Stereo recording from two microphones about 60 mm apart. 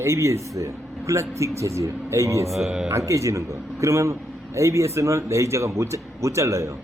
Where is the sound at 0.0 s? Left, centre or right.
Right.